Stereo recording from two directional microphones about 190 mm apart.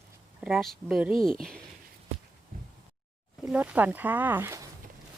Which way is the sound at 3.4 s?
5° right (ahead or behind).